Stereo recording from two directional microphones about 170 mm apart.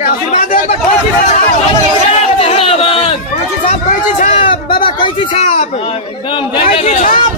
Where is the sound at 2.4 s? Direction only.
35° left (ahead or behind).